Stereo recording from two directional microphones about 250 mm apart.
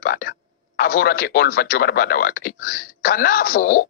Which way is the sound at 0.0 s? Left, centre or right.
Left.